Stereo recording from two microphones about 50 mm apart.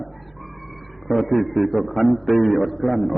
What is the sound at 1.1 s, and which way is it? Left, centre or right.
A man's voice, centre.